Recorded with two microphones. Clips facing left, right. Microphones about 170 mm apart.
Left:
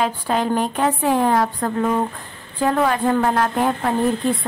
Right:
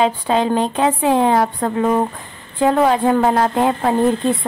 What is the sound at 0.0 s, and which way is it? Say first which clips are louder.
A woman's voice: right 4 dB; 20° right (ahead or behind).